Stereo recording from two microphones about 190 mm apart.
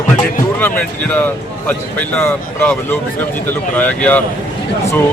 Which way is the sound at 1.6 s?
10° left (ahead or behind).